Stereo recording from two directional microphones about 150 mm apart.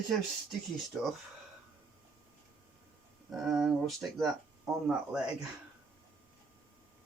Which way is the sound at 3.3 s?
Centre (ahead or behind).